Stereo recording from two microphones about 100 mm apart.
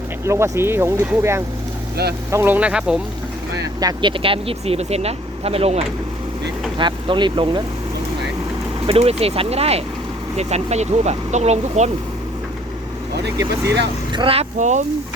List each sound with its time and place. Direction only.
0.3 s speech: 30° right (ahead or behind)
2.6 s speech: 10° right (ahead or behind)
3.8 s speech: 40° right (ahead or behind)
4.1 s speech: 65° right (ahead or behind); by 5.8 s 85° right
6.7 s speech: 50° right (ahead or behind)
8.9 s speech: 90° right
13.3 s speech: 40° right (ahead or behind)